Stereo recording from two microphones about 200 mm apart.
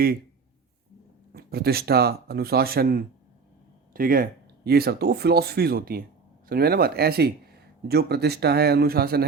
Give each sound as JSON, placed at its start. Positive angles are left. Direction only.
{"t": 1.3, "sound": "speech", "side_deg": -50}